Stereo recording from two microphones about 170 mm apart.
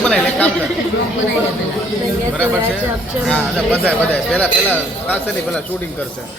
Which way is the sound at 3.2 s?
5° left (ahead or behind).